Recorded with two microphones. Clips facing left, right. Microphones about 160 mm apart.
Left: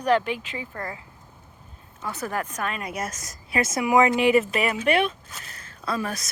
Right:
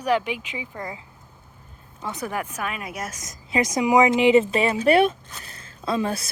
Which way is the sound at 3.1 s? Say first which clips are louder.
Right 2 dB; 20° right (ahead or behind).